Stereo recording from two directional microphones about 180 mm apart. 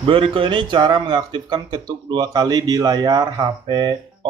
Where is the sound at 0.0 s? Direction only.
30° right (ahead or behind).